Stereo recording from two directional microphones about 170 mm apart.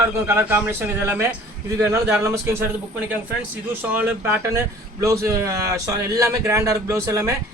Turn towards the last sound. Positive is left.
turn(degrees=-15)  # may be behind; listen again after turning